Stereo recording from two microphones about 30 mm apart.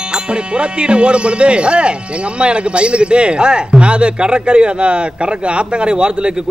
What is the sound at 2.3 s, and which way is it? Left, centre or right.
Speech, right.